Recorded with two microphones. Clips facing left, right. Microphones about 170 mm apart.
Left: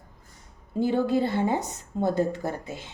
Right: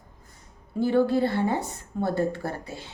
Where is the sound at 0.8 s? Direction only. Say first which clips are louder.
Right 2 dB; 20° left (ahead or behind).